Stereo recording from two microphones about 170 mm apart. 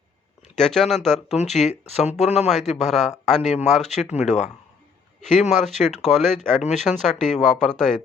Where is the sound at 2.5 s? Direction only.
Centre (ahead or behind).